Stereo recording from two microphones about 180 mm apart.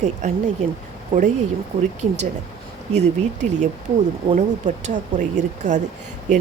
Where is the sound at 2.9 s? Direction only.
40° right (ahead or behind).